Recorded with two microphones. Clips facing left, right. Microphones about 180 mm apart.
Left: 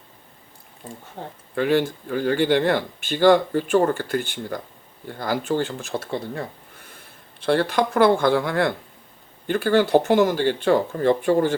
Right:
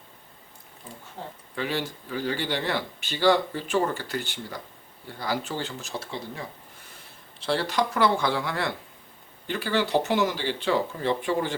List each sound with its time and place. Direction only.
1.2 s speech: 55° left (ahead or behind)